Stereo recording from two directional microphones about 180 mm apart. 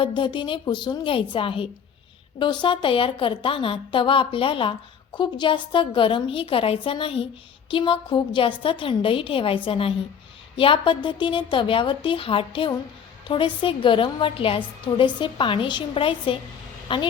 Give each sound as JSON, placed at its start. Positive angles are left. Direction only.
{"t": 0.0, "sound": "a woman's voice", "side_deg": 25}